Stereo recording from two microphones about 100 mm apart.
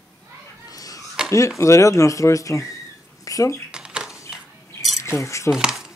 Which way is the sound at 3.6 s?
10° right (ahead or behind).